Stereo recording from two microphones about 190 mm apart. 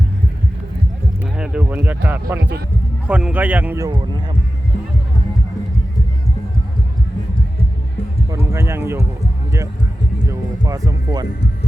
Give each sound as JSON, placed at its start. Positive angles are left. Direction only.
{"t": 1.2, "sound": "a sound", "side_deg": -5}
{"t": 2.4, "sound": "speech", "side_deg": -60}
{"t": 3.1, "sound": "speech", "side_deg": -5}
{"t": 8.5, "sound": "speech", "side_deg": -15}
{"t": 10.2, "sound": "speech", "side_deg": -20}